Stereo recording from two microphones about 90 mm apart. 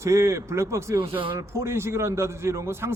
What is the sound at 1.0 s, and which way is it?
Speech, 70° right (ahead or behind).